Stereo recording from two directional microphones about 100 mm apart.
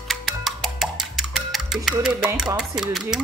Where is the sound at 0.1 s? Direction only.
Centre (ahead or behind).